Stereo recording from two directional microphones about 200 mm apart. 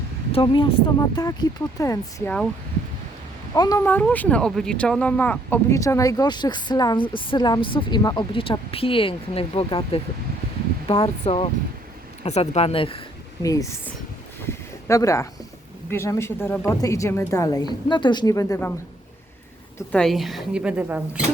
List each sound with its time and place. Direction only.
0.3 s a woman's voice: 25° left (ahead or behind); by 2.5 s 5° left (ahead or behind)
3.5 s speech: 15° left (ahead or behind)
13.4 s a woman's voice: 15° left (ahead or behind)
14.4 s a sound: 15° left (ahead or behind)
15.9 s a woman's voice: 15° left (ahead or behind)
19.9 s a woman's voice: centre (ahead or behind)